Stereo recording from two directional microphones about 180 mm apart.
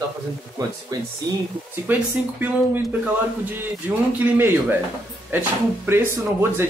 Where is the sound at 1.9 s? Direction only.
10° right (ahead or behind).